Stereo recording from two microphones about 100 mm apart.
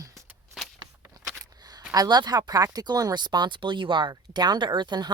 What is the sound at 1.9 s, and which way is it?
Speech, 40° right (ahead or behind).